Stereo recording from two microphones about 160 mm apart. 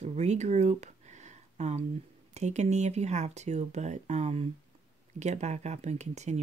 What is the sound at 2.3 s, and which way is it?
Speech, 45° right (ahead or behind).